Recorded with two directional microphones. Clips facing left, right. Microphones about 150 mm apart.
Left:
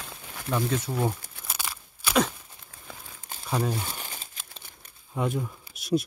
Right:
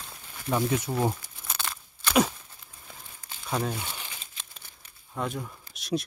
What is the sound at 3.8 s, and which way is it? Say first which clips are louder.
Crumpling: left 2 dB; 40° left (ahead or behind).